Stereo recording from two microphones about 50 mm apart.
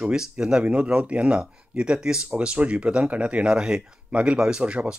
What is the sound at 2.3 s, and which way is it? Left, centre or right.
Speech, right.